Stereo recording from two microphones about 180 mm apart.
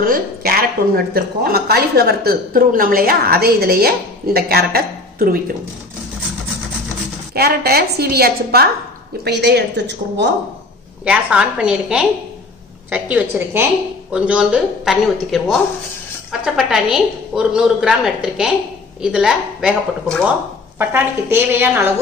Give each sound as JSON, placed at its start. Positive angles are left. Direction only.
{"t": 0.0, "sound": "speech", "side_deg": -55}
{"t": 7.3, "sound": "a woman's voice", "side_deg": -60}
{"t": 11.1, "sound": "a woman's voice", "side_deg": -5}
{"t": 20.9, "sound": "a woman's voice", "side_deg": -10}